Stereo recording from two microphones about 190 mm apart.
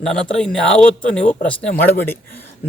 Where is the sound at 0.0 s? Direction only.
5° left (ahead or behind).